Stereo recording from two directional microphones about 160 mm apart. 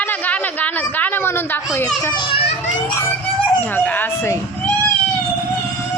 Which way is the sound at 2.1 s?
30° left (ahead or behind).